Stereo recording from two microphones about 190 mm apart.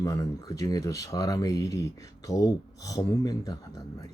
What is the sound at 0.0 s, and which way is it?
Speech, 20° left (ahead or behind).